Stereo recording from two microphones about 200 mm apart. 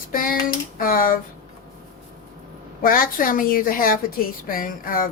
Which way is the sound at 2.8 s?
45° left (ahead or behind).